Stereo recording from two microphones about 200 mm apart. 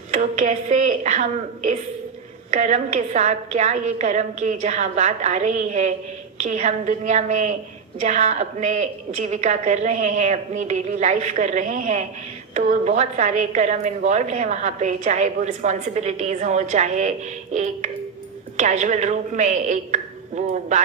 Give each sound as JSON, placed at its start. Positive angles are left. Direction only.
{"t": 0.1, "sound": "a woman's voice", "side_deg": -35}